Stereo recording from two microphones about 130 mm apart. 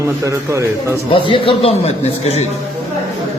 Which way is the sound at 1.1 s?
40° left (ahead or behind).